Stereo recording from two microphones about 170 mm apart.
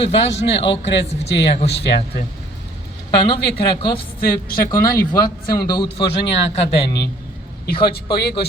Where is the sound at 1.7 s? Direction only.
75° left (ahead or behind).